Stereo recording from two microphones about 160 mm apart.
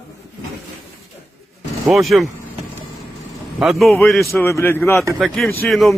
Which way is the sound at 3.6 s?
Centre (ahead or behind).